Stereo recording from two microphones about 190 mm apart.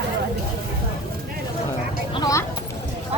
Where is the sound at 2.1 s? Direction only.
20° left (ahead or behind).